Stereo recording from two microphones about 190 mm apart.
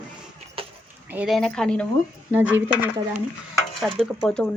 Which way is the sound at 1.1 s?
10° right (ahead or behind).